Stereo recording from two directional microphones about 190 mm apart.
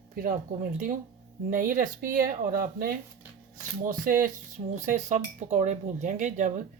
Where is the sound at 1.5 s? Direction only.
45° right (ahead or behind).